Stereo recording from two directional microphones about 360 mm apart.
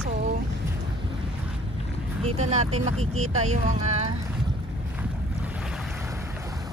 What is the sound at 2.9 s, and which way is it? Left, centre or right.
Speech, right.